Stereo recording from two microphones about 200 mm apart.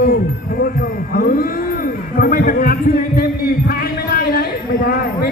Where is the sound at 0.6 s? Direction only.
45° left (ahead or behind).